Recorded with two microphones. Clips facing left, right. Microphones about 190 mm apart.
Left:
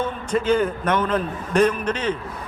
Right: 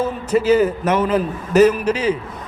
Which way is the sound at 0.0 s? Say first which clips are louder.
Right 5 dB; 5° right (ahead or behind).